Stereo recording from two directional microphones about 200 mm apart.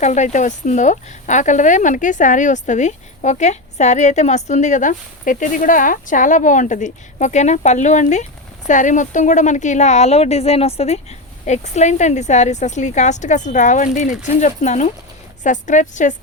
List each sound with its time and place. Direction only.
0.0 s speech: 35° left (ahead or behind)